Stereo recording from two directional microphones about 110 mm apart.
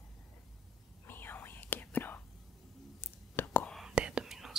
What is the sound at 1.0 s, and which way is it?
Whispering, 20° left (ahead or behind).